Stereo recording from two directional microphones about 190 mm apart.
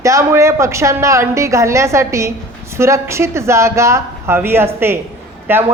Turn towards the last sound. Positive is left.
turn(degrees=-10)  # may be behind; listen again after turning